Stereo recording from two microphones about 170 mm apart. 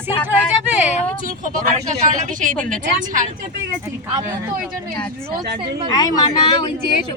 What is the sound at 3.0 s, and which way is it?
Speech, 50° right (ahead or behind).